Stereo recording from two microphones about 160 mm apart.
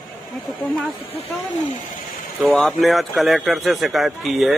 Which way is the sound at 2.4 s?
Centre (ahead or behind).